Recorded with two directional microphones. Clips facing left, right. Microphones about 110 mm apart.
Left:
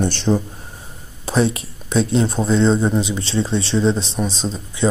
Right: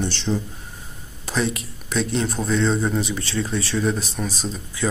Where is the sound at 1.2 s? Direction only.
30° left (ahead or behind).